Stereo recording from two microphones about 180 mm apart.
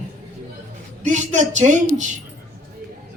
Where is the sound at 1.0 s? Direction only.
40° right (ahead or behind).